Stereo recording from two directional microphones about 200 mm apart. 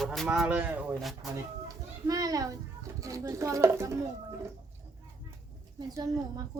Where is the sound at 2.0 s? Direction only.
20° right (ahead or behind).